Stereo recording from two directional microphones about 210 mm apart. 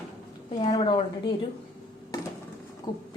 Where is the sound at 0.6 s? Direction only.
25° left (ahead or behind).